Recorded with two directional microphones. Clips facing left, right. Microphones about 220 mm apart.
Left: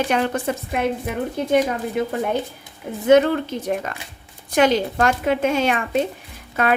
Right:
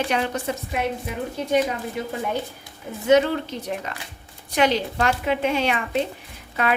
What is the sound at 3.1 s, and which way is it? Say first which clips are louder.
A woman's voice: left 3 dB; 55° left (ahead or behind).